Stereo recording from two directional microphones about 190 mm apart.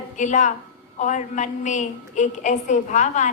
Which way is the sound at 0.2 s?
40° left (ahead or behind).